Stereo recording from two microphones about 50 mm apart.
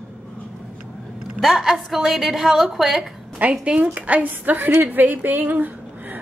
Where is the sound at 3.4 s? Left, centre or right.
Right.